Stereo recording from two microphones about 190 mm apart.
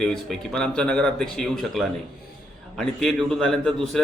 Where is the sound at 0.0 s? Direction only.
5° left (ahead or behind).